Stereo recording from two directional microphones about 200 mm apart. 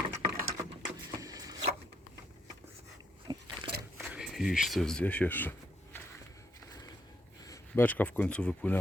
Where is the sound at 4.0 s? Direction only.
5° right (ahead or behind).